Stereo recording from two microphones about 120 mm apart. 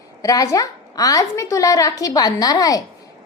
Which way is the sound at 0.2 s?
30° left (ahead or behind).